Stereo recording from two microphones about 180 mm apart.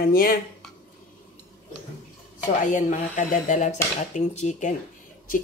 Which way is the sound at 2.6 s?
45° left (ahead or behind).